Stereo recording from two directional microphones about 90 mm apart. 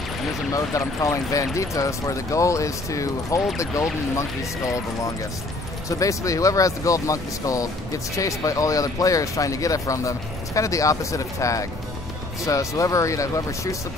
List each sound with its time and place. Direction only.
0.5 s speech: 35° left (ahead or behind)
5.9 s speech: 35° left (ahead or behind)